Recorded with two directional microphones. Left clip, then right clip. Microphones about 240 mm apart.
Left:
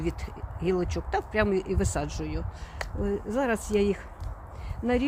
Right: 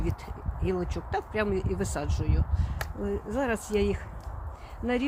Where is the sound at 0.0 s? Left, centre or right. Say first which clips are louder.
Left 3 dB; left.